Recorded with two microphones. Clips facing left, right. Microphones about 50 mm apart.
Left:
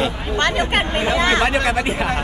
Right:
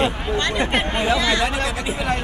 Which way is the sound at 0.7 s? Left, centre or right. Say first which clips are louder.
Left 1 dB; left.